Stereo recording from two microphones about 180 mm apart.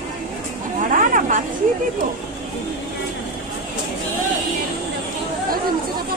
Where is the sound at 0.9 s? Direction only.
45° right (ahead or behind).